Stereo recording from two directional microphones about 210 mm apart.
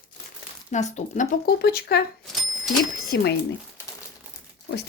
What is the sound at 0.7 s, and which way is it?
Speech, 35° left (ahead or behind).